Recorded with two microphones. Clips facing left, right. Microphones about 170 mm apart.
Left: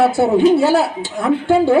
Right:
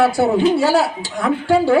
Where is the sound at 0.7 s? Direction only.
25° left (ahead or behind).